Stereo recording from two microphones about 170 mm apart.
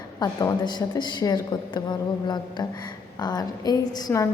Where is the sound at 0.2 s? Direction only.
25° left (ahead or behind).